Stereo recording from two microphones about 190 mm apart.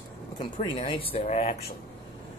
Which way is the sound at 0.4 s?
25° left (ahead or behind).